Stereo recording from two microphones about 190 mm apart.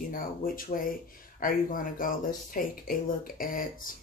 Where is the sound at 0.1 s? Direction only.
50° left (ahead or behind).